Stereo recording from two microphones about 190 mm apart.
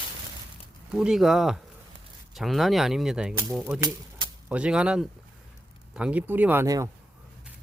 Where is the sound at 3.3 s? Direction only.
15° right (ahead or behind).